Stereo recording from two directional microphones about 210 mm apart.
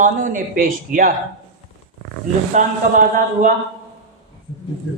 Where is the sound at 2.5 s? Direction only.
35° right (ahead or behind).